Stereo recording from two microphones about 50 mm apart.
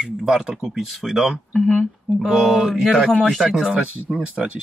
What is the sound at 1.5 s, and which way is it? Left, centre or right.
Speech, left.